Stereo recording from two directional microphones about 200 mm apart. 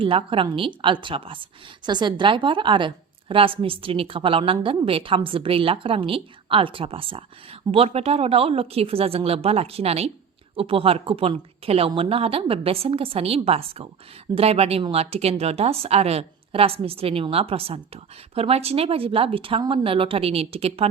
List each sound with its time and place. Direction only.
0.0 s a woman's voice: 25° right (ahead or behind)